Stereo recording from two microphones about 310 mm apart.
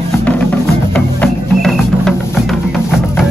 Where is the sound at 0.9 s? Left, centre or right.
Centre.